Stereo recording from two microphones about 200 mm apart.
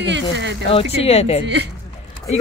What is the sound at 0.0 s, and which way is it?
Speech, 60° right (ahead or behind).